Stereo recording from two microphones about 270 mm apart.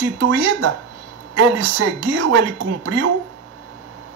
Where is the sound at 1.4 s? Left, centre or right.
Right.